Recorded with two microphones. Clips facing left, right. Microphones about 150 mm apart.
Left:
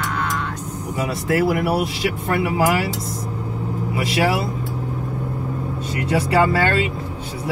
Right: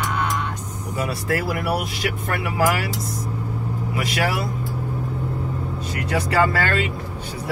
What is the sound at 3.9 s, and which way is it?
Speech, 25° left (ahead or behind).